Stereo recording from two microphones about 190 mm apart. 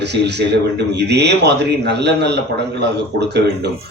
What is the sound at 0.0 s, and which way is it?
Speech, 65° right (ahead or behind).